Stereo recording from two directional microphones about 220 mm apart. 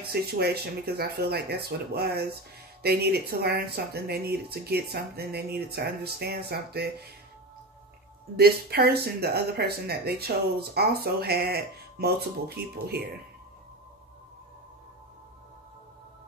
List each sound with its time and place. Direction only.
0.0 s speech: 45° right (ahead or behind)
8.4 s speech: 45° right (ahead or behind)